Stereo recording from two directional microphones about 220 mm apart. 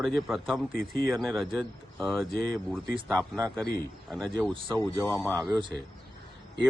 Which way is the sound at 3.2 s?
15° right (ahead or behind).